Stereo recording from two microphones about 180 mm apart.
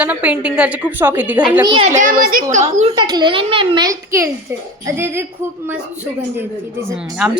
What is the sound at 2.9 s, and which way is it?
A child's voice, 25° right (ahead or behind).